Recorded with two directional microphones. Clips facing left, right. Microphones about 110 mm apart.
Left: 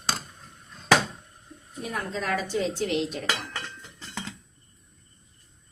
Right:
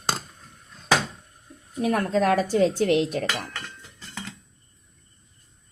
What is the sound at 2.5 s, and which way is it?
Speech, 50° right (ahead or behind).